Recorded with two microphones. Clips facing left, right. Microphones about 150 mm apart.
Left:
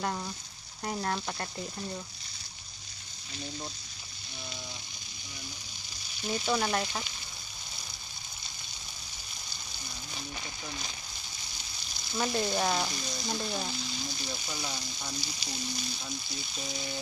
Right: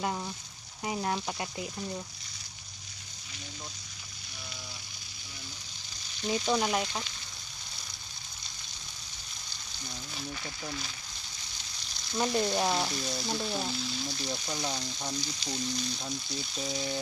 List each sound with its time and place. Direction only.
0.0 s speech: 10° right (ahead or behind)
6.2 s frying: 5° left (ahead or behind)
6.5 s speech: 15° right (ahead or behind)
6.8 s frying: 5° left (ahead or behind)
12.3 s frying: centre (ahead or behind)
14.6 s speech: 20° right (ahead or behind)
15.1 s frying: 10° left (ahead or behind)